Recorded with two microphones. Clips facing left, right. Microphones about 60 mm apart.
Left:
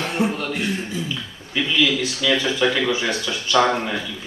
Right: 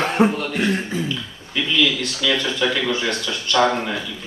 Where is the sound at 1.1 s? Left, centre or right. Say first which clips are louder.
Right 1 dB; centre.